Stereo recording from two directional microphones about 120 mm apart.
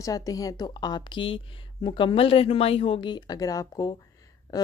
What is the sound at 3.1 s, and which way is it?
Speech, 30° left (ahead or behind).